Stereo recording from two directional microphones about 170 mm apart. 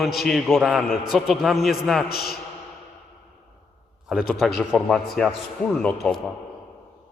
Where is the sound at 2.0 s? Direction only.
65° left (ahead or behind).